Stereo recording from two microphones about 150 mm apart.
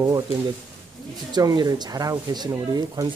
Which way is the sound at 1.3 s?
25° right (ahead or behind).